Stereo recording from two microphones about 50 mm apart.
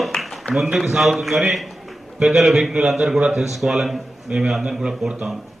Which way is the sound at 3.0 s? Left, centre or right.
Centre.